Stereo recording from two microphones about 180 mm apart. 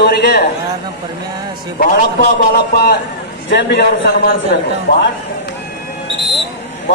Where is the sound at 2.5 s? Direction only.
60° left (ahead or behind).